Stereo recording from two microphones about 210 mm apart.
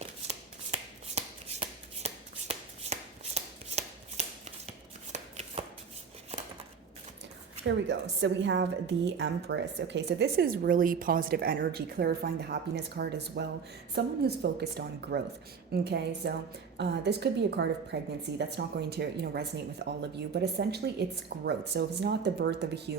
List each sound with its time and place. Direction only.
0.0 s shuffling cards: 30° right (ahead or behind)
7.7 s a woman's voice: 60° right (ahead or behind)